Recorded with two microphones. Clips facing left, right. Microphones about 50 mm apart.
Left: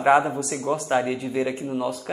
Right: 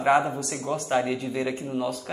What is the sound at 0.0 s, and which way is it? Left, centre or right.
Speech, centre.